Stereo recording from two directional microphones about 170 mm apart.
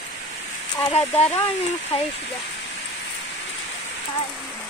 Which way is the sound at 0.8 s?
35° left (ahead or behind).